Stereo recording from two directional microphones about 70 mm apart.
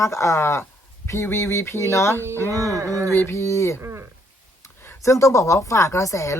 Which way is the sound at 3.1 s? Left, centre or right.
Left.